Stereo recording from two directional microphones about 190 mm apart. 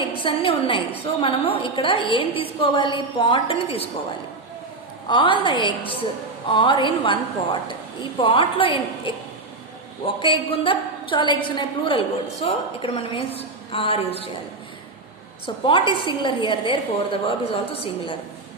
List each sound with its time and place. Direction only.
0.2 s a woman's voice: 25° left (ahead or behind)
5.0 s a woman's voice: 25° left (ahead or behind)
10.2 s a woman's voice: 25° left (ahead or behind)
15.4 s a woman's voice: 25° left (ahead or behind)